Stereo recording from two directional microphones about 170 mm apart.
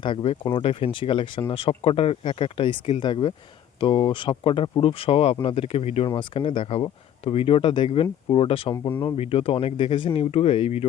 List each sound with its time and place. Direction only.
0.0 s speech: 30° left (ahead or behind)